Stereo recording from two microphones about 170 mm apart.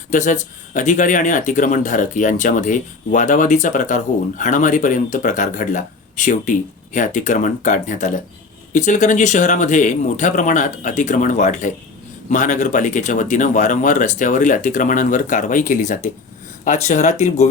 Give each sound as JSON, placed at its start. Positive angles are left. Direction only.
{"t": 0.1, "sound": "speech", "side_deg": 45}